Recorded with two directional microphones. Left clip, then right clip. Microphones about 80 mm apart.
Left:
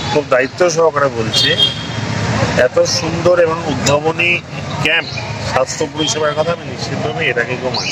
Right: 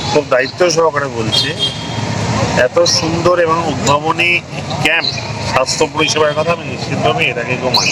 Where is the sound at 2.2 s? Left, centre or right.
Left.